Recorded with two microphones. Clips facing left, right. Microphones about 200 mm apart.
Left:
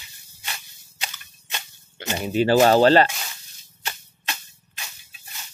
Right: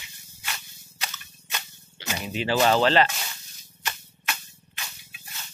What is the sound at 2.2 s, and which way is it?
Speech, 45° left (ahead or behind).